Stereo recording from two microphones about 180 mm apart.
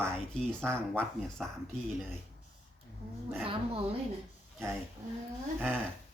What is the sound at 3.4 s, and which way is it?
Speech, 30° right (ahead or behind).